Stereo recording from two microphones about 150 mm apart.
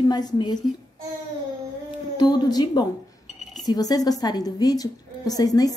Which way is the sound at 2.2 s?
30° left (ahead or behind).